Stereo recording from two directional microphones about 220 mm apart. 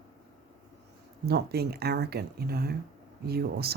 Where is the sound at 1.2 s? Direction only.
45° right (ahead or behind).